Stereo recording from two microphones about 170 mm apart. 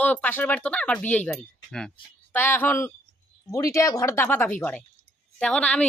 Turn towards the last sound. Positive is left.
turn(degrees=5)  # may be behind; listen again after turning